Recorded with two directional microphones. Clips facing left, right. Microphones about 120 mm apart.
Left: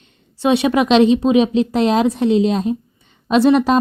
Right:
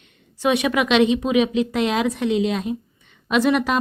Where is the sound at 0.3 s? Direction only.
30° left (ahead or behind).